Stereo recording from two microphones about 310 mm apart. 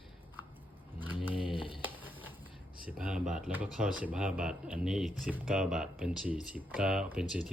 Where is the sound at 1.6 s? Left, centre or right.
Centre.